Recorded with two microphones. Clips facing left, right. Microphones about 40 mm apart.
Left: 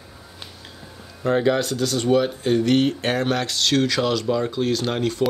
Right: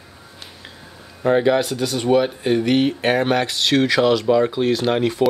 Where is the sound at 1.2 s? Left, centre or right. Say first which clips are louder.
Right 3 dB; centre.